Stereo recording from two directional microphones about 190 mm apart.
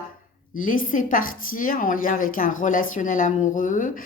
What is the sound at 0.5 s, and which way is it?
Speech, 45° left (ahead or behind).